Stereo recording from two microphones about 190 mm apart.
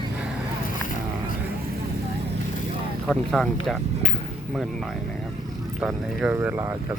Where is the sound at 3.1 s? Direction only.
Centre (ahead or behind).